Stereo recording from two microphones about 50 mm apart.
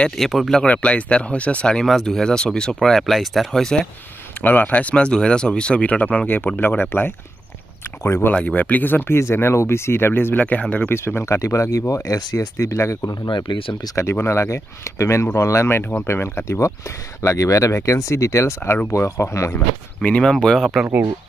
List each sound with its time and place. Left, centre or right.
0.2 s speech: centre
0.7 s speech: left
2.8 s speech: centre
4.4 s speech: left
6.2 s speech: left
6.8 s speech: left
8.4 s speech: left
9.2 s speech: left
10.3 s speech: left
10.9 s speech: left
11.2 s speech: left
16.1 s speech: left
16.4 s speech: left
20.5 s speech: centre